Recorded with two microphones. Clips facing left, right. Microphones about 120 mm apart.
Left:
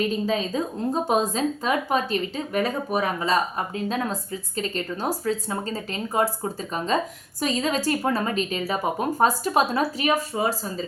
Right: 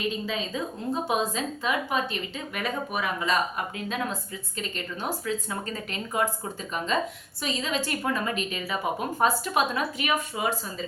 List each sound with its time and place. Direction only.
0.0 s a woman's voice: 40° left (ahead or behind)